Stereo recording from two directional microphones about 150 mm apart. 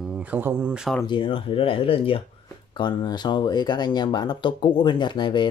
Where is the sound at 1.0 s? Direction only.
35° left (ahead or behind).